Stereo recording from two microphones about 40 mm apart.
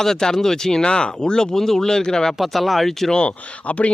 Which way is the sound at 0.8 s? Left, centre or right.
Left.